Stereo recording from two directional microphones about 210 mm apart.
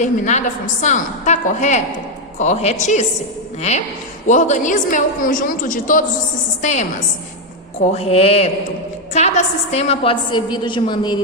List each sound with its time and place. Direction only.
0.0 s a woman's voice: 35° left (ahead or behind)
7.9 s a woman's voice: 30° left (ahead or behind)